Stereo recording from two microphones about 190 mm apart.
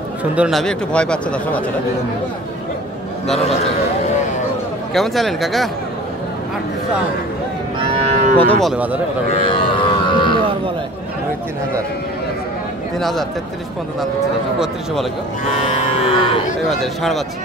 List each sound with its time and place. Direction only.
0.2 s speech: 5° right (ahead or behind)
3.3 s speech: 35° left (ahead or behind)
4.9 s speech: centre (ahead or behind)
7.9 s cattle: 40° right (ahead or behind)
8.4 s speech: 5° left (ahead or behind)
9.3 s music: 30° left (ahead or behind)
15.7 s music: 30° left (ahead or behind)
16.6 s speech: centre (ahead or behind)